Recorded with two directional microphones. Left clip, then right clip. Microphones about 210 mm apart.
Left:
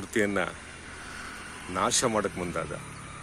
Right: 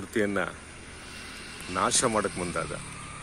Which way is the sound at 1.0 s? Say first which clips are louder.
Left 1 dB; 25° left (ahead or behind).